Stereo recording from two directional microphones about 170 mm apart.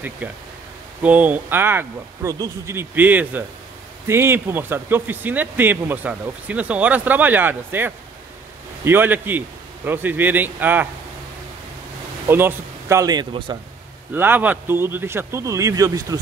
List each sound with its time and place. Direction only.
0.2 s speech: 10° right (ahead or behind)
12.3 s speech: 15° right (ahead or behind)
14.1 s speech: 10° right (ahead or behind)